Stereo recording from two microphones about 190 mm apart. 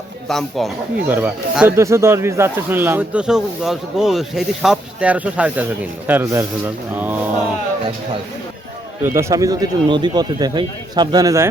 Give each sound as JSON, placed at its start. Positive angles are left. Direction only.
{"t": 0.3, "sound": "speech", "side_deg": 0}
{"t": 9.0, "sound": "speech", "side_deg": -15}